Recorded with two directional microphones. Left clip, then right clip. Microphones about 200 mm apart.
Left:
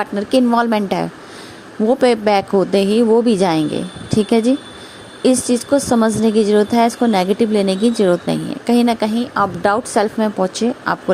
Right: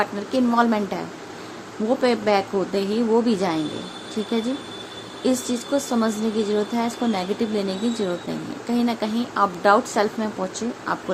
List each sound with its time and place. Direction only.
0.0 s a woman's voice: 35° left (ahead or behind)